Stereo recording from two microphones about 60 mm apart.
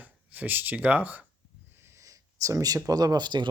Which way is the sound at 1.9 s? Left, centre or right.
Right.